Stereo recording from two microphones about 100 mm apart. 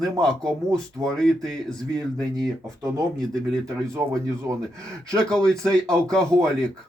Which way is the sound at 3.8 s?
30° right (ahead or behind).